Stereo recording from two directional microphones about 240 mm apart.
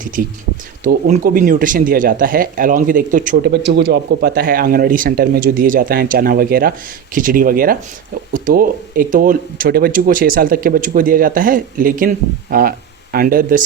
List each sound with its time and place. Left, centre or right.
0.9 s speech: right